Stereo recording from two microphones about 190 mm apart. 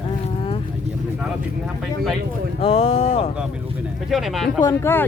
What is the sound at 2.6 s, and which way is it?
Speech, 30° left (ahead or behind).